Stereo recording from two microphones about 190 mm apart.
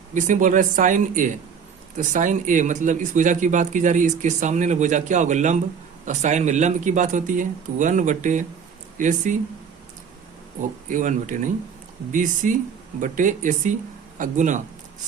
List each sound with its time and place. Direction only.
0.1 s speech: 40° right (ahead or behind)
10.6 s speech: 40° right (ahead or behind)